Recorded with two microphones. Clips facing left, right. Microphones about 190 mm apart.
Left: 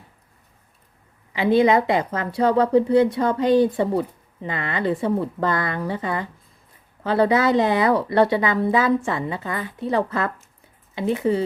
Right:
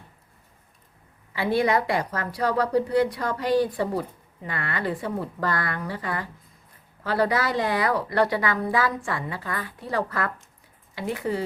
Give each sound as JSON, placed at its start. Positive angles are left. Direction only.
{"t": 1.3, "sound": "a woman's voice", "side_deg": 20}